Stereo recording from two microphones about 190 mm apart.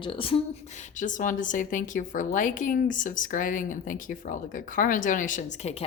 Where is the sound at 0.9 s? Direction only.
40° left (ahead or behind).